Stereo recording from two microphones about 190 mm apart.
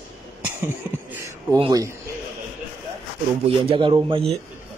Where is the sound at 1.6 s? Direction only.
20° right (ahead or behind).